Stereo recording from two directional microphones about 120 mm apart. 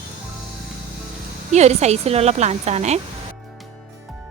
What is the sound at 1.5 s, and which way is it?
A woman's voice, 70° right (ahead or behind).